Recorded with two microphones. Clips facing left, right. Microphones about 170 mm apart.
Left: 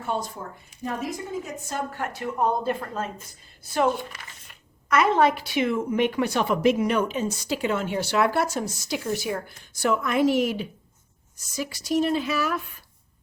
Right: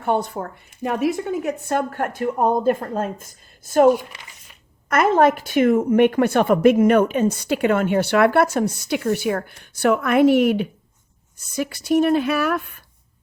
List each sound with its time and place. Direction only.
0.0 s a woman's voice: 60° right (ahead or behind)